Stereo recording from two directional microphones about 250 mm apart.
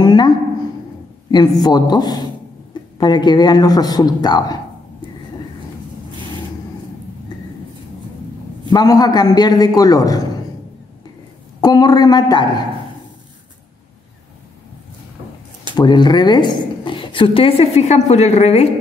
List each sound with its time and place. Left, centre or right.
0.0 s a sound: centre
1.3 s speech: centre
8.6 s speech: centre
11.6 s speech: centre
15.7 s a woman's voice: centre